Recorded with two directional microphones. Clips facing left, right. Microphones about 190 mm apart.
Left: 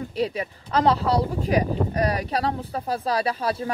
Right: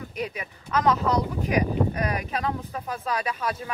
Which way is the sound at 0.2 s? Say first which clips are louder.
Left 7 dB; 30° left (ahead or behind).